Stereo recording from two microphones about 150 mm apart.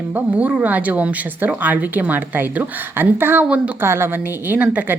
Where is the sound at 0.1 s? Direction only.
10° right (ahead or behind).